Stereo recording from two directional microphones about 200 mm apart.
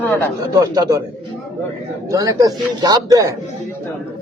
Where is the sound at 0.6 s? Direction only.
20° right (ahead or behind).